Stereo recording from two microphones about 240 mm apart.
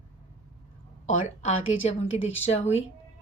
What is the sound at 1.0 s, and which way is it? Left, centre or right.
A woman's voice, left.